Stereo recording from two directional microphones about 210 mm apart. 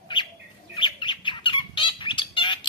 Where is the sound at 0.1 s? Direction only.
20° left (ahead or behind).